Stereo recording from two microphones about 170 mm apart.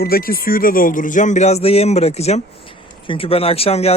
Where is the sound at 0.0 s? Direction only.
60° left (ahead or behind).